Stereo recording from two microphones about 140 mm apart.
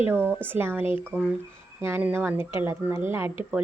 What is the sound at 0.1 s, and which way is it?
Speech, 15° right (ahead or behind).